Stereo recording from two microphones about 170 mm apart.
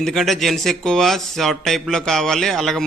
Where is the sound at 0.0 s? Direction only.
Centre (ahead or behind).